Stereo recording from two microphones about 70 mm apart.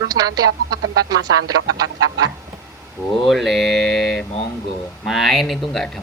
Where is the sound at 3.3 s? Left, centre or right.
Centre.